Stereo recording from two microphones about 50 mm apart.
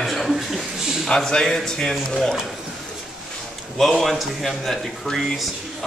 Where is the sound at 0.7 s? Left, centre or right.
Centre.